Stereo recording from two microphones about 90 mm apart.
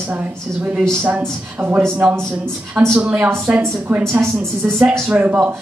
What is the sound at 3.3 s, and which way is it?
A woman's voice, 25° right (ahead or behind).